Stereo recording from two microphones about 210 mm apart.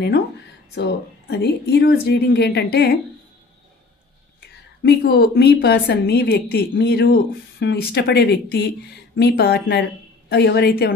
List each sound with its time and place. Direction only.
0.7 s speech: 50° left (ahead or behind)
4.8 s speech: 50° left (ahead or behind)